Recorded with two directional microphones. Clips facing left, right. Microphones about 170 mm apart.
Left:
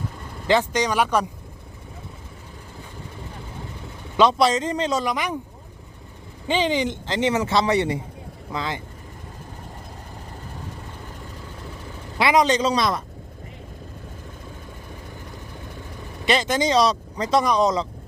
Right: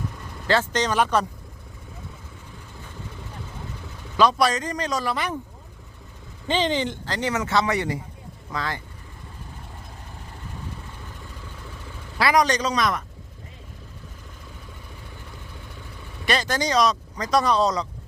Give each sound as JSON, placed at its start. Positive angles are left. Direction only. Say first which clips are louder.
{"t": 0.4, "sound": "speech", "louder": "left 2 dB", "side_deg": 15}
{"t": 4.2, "sound": "speech", "louder": "left 2 dB", "side_deg": 25}
{"t": 5.1, "sound": "speech", "louder": "left 1 dB", "side_deg": 15}
{"t": 6.5, "sound": "speech", "louder": "left 2 dB", "side_deg": 10}
{"t": 12.1, "sound": "speech", "louder": "left 2 dB", "side_deg": 20}
{"t": 16.2, "sound": "speech", "louder": "left 3 dB", "side_deg": 20}
{"t": 17.4, "sound": "speech", "louder": "left 1 dB", "side_deg": 15}